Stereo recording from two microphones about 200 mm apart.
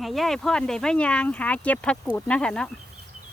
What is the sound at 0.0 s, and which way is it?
Speech, centre (ahead or behind).